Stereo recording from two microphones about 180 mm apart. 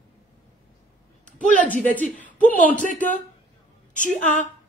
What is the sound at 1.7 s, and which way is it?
Speech, 10° left (ahead or behind).